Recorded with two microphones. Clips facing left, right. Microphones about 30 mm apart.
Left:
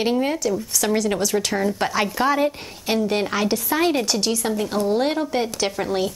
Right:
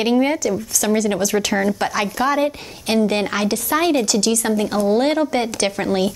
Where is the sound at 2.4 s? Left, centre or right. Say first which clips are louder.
Right 1 dB; centre.